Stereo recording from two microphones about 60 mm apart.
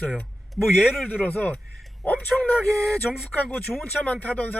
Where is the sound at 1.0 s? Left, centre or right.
Left.